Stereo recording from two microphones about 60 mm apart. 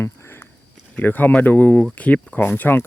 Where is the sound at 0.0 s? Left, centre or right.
Left.